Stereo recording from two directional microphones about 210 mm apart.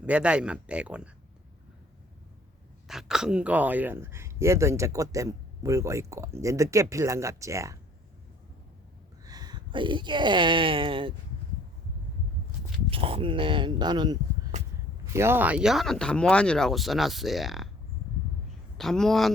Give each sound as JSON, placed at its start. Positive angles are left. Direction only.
{"t": 0.0, "sound": "speech", "side_deg": -5}
{"t": 2.8, "sound": "speech", "side_deg": 0}
{"t": 9.2, "sound": "speech", "side_deg": -20}
{"t": 12.9, "sound": "speech", "side_deg": -25}
{"t": 18.8, "sound": "speech", "side_deg": 0}